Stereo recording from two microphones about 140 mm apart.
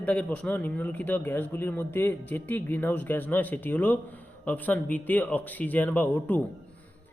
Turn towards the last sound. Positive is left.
turn(degrees=10)  # may be behind; listen again after turning